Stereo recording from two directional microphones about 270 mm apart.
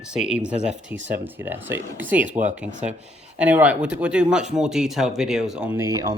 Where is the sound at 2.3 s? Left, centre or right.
Right.